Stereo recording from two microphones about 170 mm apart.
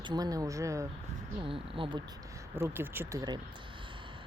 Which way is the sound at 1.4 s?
30° right (ahead or behind).